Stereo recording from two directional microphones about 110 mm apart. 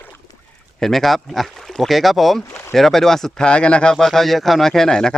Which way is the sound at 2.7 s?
Centre (ahead or behind).